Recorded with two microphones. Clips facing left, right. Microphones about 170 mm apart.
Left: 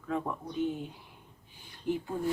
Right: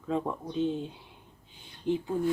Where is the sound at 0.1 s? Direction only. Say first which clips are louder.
Right 3 dB; 25° right (ahead or behind).